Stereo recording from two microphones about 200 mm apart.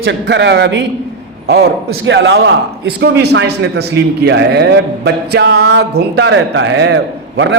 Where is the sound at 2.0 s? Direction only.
65° right (ahead or behind).